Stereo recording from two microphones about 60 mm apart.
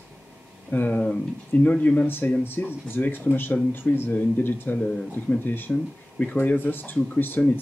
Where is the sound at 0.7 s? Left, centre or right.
Left.